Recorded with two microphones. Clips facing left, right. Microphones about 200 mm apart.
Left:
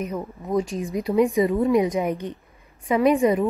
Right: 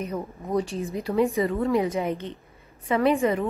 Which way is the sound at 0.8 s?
15° left (ahead or behind).